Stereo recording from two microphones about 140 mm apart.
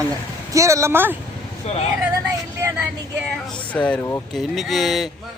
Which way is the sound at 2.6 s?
10° right (ahead or behind).